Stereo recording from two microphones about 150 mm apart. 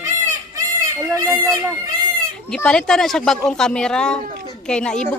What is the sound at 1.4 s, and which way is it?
Speech, 20° right (ahead or behind).